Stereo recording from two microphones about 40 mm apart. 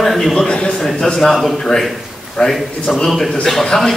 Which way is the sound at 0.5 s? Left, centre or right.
Left.